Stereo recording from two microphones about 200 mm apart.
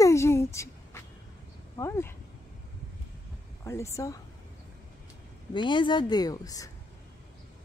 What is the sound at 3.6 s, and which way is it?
Speech, 15° left (ahead or behind).